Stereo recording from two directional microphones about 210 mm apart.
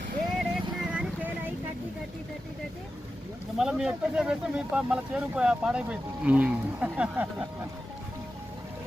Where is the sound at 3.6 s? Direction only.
5° right (ahead or behind).